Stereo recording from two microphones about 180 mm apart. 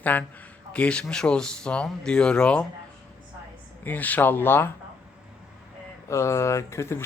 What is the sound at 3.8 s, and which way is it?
Speech, 10° left (ahead or behind).